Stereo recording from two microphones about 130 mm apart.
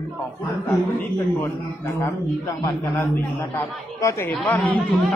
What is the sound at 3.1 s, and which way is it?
A man's voice, 15° left (ahead or behind).